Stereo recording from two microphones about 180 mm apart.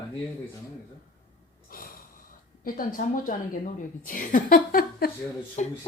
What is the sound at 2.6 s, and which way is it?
A woman's voice, 50° left (ahead or behind).